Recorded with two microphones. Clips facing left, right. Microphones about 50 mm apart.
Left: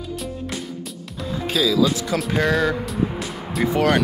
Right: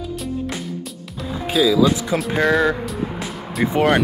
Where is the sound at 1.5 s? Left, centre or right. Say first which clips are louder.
Right 3 dB; centre.